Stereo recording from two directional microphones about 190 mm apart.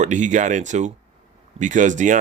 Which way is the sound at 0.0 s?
40° right (ahead or behind).